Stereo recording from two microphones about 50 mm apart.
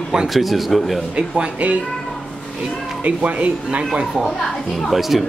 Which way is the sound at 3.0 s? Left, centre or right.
Right.